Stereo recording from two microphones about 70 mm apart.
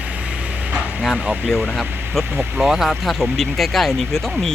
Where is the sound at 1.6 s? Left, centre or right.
Centre.